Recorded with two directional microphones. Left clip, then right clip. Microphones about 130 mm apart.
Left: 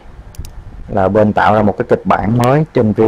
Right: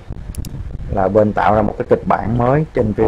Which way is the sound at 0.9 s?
25° left (ahead or behind).